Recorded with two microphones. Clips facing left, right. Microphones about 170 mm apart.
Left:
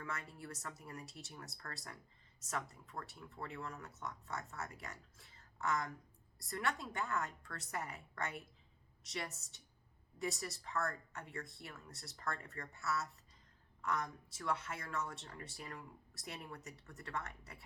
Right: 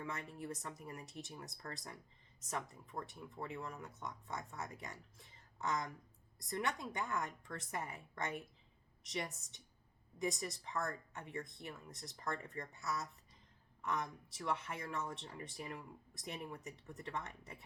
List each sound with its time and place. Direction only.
0.0 s speech: 20° right (ahead or behind)